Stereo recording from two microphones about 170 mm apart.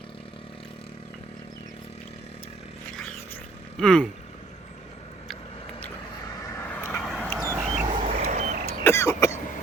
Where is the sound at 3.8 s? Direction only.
5° left (ahead or behind).